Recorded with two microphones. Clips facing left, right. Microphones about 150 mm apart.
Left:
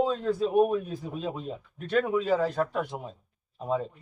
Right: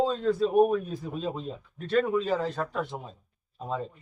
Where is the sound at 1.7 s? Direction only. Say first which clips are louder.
Right 1 dB; 10° left (ahead or behind).